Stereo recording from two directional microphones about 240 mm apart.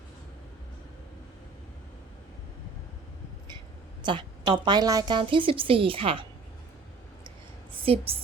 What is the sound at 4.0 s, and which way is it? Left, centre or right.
Speech, centre.